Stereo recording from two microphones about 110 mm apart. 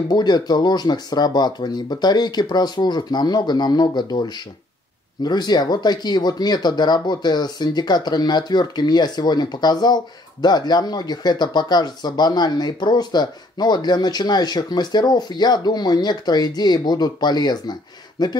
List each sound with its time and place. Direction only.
0.1 s speech: 40° left (ahead or behind)